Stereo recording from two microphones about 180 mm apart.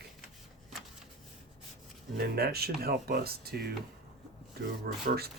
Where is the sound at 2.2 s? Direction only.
60° right (ahead or behind).